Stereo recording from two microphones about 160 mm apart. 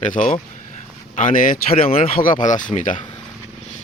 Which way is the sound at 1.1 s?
55° left (ahead or behind).